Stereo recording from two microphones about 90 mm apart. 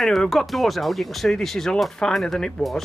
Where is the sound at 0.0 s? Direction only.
5° left (ahead or behind).